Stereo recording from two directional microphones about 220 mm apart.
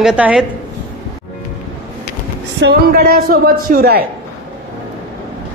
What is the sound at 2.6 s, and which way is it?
A woman's voice, 45° right (ahead or behind).